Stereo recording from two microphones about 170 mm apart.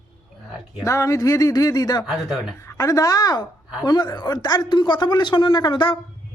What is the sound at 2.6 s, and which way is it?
Speech, 20° left (ahead or behind).